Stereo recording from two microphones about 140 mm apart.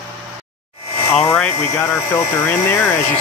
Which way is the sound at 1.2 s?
15° left (ahead or behind).